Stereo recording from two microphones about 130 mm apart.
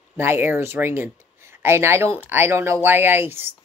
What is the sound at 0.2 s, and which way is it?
Speech, 20° right (ahead or behind).